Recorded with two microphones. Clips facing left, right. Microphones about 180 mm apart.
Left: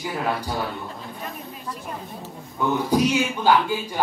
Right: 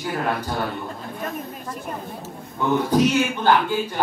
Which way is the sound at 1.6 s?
50° right (ahead or behind).